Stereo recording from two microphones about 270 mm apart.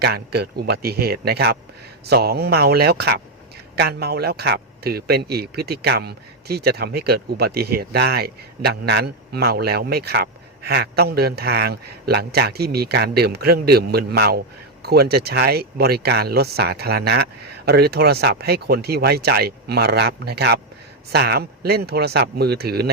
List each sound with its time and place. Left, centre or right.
0.0 s speech: right